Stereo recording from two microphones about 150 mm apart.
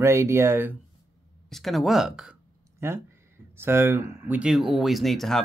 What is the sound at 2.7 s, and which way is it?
Speech, 15° right (ahead or behind).